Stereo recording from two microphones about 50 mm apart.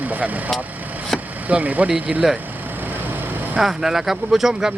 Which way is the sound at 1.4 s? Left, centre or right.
Right.